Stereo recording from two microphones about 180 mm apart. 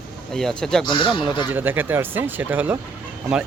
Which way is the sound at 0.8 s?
25° left (ahead or behind).